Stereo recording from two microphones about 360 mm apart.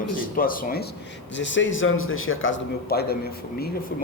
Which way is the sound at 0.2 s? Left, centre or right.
Left.